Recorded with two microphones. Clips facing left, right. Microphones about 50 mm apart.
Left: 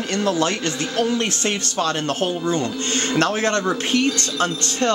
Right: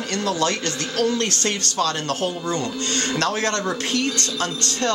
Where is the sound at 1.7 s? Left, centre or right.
Left.